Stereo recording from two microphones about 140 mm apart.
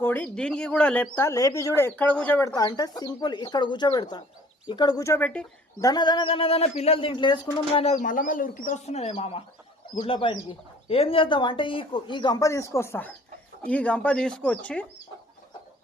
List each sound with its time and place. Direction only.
0.0 s speech: 15° left (ahead or behind)
2.6 s speech: 30° left (ahead or behind)
5.8 s speech: 30° left (ahead or behind); by 8.0 s 45° left (ahead or behind)
8.0 s speech: 75° left (ahead or behind)
8.9 s speech: 50° left (ahead or behind); by 14.8 s 10° left (ahead or behind)